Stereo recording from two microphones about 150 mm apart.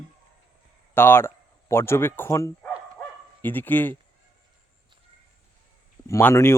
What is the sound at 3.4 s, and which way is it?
Speech, 10° left (ahead or behind).